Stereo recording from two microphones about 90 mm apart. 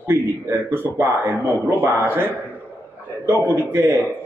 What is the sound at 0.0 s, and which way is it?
Speech, 25° right (ahead or behind).